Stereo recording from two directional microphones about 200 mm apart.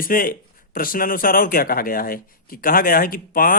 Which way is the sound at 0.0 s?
45° left (ahead or behind).